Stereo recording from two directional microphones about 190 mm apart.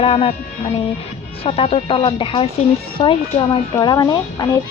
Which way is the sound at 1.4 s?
30° left (ahead or behind).